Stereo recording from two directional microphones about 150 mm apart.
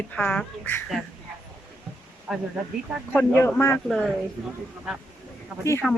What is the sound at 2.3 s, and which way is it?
Speech, centre (ahead or behind).